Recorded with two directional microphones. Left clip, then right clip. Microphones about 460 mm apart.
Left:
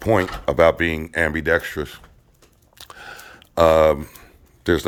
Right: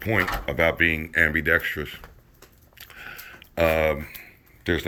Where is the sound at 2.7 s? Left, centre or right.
Centre.